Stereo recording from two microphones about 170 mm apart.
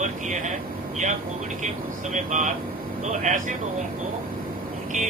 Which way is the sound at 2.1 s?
45° right (ahead or behind).